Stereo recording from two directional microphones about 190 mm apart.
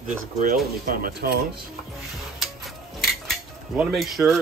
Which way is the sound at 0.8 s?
50° right (ahead or behind).